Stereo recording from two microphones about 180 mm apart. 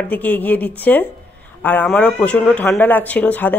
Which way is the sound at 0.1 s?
10° left (ahead or behind).